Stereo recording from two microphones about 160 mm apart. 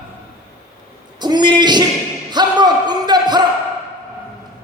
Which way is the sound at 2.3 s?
25° right (ahead or behind).